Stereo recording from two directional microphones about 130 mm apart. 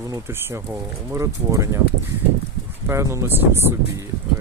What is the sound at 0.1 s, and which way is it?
Speech, 20° right (ahead or behind).